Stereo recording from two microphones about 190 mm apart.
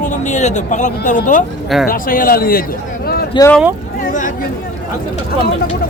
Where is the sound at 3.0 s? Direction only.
55° left (ahead or behind).